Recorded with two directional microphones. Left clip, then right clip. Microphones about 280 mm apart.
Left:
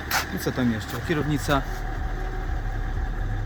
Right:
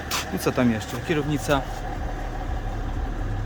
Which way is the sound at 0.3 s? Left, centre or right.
Centre.